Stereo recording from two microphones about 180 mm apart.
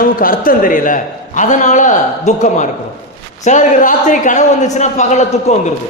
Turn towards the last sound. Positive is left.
turn(degrees=35)  # may be behind; listen again after turning